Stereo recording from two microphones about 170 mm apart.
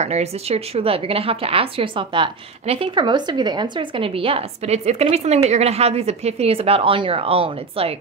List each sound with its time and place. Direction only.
0.0 s a woman's voice: 40° right (ahead or behind)